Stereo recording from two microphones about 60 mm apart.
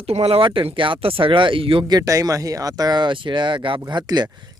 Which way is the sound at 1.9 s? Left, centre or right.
Right.